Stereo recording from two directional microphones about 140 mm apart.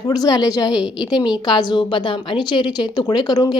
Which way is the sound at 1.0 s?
30° left (ahead or behind).